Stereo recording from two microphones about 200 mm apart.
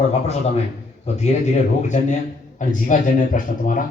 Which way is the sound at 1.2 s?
35° left (ahead or behind).